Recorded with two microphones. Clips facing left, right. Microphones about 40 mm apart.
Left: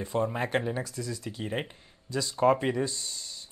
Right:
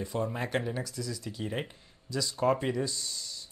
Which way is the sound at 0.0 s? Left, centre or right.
Centre.